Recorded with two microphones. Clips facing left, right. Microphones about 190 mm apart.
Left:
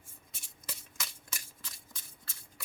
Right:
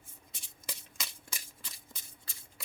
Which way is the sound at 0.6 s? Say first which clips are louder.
Even; 15° right (ahead or behind).